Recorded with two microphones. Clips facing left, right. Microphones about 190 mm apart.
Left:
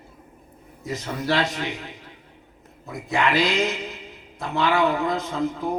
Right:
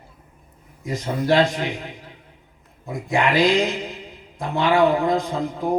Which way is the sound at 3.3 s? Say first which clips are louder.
Right 4 dB; 50° right (ahead or behind).